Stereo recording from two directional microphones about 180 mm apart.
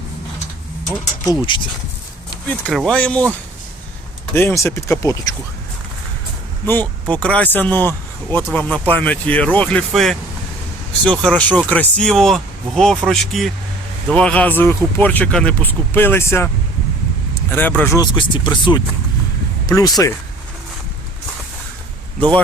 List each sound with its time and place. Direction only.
1.2 s speech: 25° left (ahead or behind)
2.5 s speech: 5° left (ahead or behind)
4.4 s speech: 15° left (ahead or behind)
6.7 s speech: 10° left (ahead or behind)
17.5 s speech: 10° left (ahead or behind)